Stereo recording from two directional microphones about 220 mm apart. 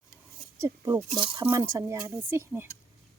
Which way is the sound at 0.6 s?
15° right (ahead or behind).